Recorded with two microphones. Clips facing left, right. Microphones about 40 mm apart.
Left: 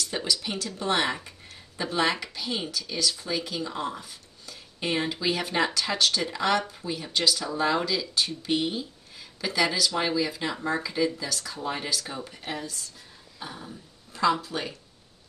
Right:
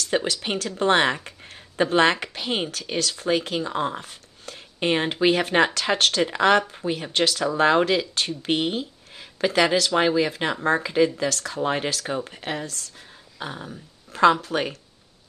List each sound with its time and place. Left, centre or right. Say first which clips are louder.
0.0 s speech: right 5 dB; right